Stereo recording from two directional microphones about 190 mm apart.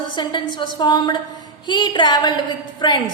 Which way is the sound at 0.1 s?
25° left (ahead or behind).